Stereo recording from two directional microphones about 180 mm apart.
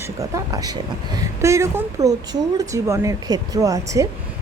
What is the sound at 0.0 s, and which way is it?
A woman's voice, 20° right (ahead or behind).